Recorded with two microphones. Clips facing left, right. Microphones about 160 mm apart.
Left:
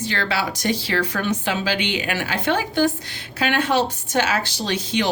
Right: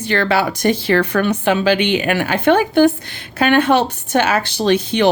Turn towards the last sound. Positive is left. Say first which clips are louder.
# right 8 dB
turn(degrees=-55)  # may be behind; listen again after turning